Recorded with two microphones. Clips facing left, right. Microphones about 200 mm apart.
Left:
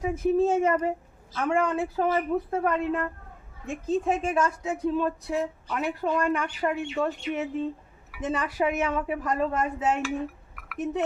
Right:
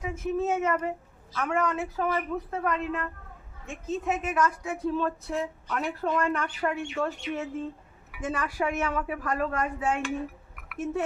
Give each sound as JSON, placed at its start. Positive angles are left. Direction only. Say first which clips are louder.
{"t": 0.0, "sound": "a woman's voice", "louder": "left 6 dB", "side_deg": 35}
{"t": 10.5, "sound": "dishes", "louder": "left 2 dB", "side_deg": 0}